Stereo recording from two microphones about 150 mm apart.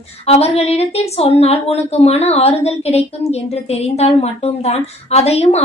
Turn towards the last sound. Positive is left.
turn(degrees=45)  # may be behind; listen again after turning